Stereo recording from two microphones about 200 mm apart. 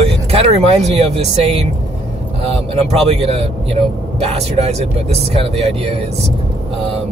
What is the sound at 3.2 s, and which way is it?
Speech, 30° right (ahead or behind).